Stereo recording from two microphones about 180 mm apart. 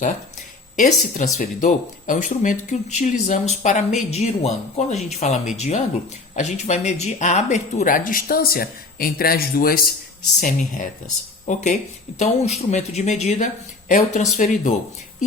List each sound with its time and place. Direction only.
0.8 s speech: 45° left (ahead or behind)